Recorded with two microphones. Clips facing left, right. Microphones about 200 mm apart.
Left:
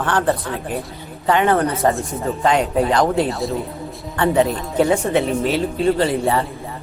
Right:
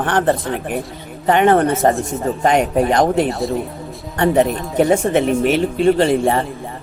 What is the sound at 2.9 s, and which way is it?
Speech, 20° right (ahead or behind).